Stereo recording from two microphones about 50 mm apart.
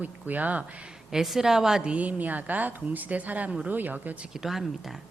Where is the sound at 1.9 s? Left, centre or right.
Right.